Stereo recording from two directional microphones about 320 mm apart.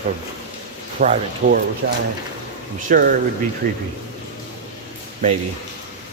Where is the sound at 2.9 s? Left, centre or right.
Right.